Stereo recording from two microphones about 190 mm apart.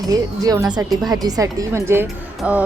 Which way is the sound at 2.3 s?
5° right (ahead or behind).